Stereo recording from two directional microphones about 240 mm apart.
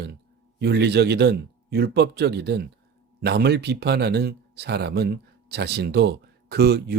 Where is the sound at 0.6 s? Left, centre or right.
Right.